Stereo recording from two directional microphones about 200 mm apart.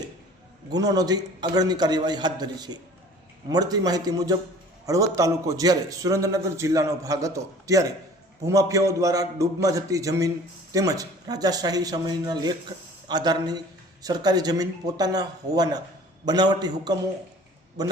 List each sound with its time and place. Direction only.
0.9 s a man's voice: 20° right (ahead or behind)